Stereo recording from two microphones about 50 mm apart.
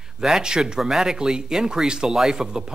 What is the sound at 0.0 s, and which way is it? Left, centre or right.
Speech, centre.